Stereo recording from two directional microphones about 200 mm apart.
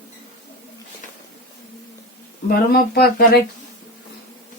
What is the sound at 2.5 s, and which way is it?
Speech, 50° left (ahead or behind).